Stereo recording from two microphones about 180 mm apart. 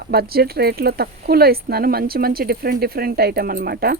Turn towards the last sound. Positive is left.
turn(degrees=-55)  # may be behind; listen again after turning